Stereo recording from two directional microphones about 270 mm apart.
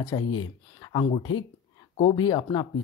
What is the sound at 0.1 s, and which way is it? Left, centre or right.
Speech, centre.